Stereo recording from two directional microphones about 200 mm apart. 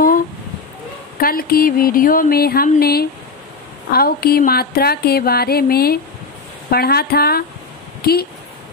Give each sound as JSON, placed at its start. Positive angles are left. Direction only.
{"t": 1.2, "sound": "speech", "side_deg": 45}